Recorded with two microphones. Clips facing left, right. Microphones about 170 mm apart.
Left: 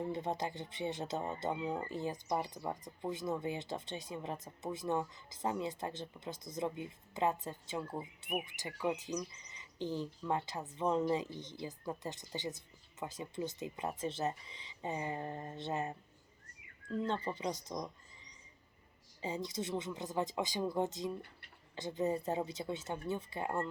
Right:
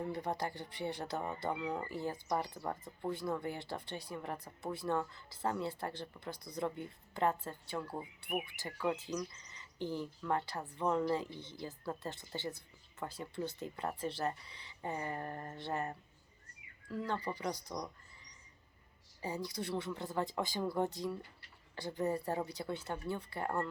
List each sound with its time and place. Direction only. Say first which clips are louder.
0.0 s speech: left 1 dB; 20° left (ahead or behind)